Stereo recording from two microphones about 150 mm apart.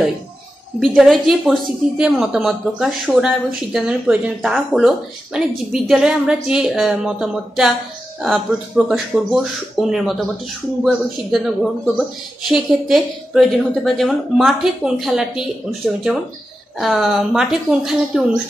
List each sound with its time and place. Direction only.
0.7 s a woman's voice: centre (ahead or behind)